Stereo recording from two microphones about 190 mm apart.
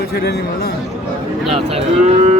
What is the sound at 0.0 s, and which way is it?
Speech, 55° left (ahead or behind).